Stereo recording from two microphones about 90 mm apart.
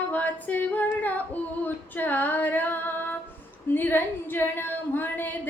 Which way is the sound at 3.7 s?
20° left (ahead or behind).